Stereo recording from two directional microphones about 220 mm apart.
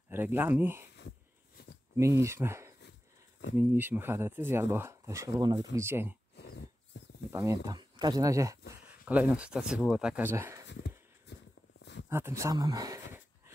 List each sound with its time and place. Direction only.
0.1 s speech: 10° right (ahead or behind)
2.0 s speech: 10° right (ahead or behind)
6.3 s dog: 50° left (ahead or behind)
7.3 s speech: 15° right (ahead or behind)
10.7 s a sound: 50° left (ahead or behind)
12.1 s speech: 10° right (ahead or behind)